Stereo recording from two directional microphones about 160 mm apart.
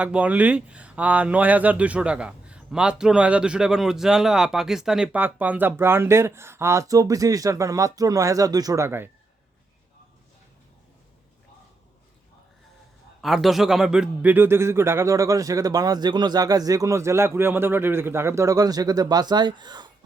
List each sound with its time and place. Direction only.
0.0 s speech: 10° right (ahead or behind)
13.2 s a man's voice: centre (ahead or behind); by 19.9 s 25° right (ahead or behind)